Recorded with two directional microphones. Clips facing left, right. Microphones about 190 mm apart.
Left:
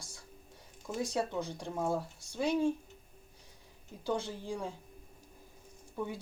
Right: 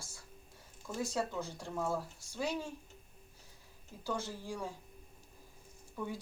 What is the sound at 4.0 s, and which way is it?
Speech, 20° left (ahead or behind).